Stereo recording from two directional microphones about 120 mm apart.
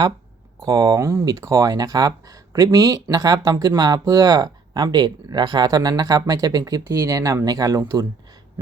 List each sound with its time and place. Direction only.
0.6 s speech: 35° right (ahead or behind)